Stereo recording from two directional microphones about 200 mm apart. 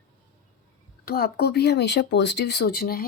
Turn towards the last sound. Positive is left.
turn(degrees=50)  # may be behind; listen again after turning